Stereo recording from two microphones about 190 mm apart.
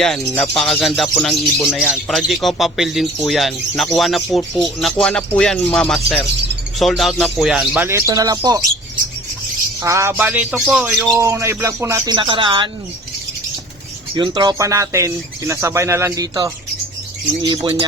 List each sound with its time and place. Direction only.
0.0 s speech: 5° left (ahead or behind); by 8.6 s 20° right (ahead or behind)
9.8 s speech: 15° right (ahead or behind)
11.2 s speech: 15° right (ahead or behind)
14.2 s speech: 20° right (ahead or behind)